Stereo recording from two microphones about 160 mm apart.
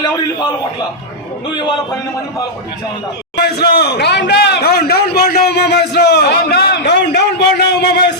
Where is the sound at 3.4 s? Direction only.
90° left.